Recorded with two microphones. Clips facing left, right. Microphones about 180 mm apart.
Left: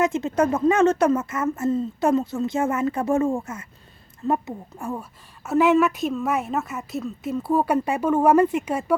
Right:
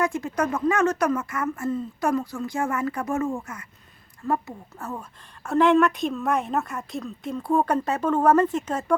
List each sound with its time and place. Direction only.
0.0 s a woman's voice: 25° left (ahead or behind)